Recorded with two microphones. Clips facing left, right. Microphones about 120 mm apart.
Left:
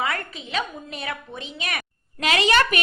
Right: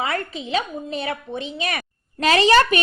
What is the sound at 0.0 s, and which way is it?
A woman's voice, 30° right (ahead or behind).